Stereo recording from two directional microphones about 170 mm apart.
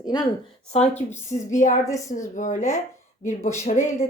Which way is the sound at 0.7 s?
40° left (ahead or behind).